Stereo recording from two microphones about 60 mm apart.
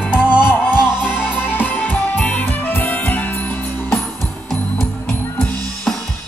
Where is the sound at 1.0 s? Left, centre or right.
Centre.